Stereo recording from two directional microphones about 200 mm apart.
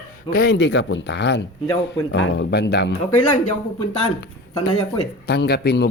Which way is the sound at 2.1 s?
65° left (ahead or behind).